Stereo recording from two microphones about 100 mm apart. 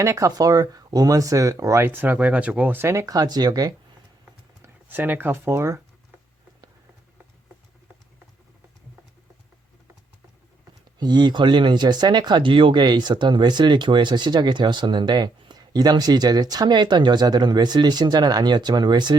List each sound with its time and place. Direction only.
0.0 s speech: 30° right (ahead or behind); by 2.8 s 15° right (ahead or behind)
2.8 s speech: 30° right (ahead or behind)
4.6 s speech: 20° right (ahead or behind)
11.0 s speech: 45° right (ahead or behind)
12.8 s speech: 45° right (ahead or behind)